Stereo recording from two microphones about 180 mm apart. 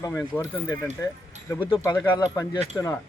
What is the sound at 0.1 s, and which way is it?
Speech, 5° left (ahead or behind).